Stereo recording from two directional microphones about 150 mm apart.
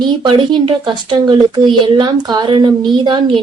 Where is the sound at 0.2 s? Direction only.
30° right (ahead or behind).